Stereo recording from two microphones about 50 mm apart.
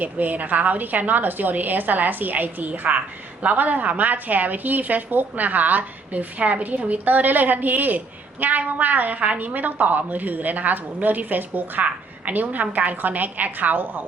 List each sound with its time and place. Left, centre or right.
0.0 s a woman's voice: right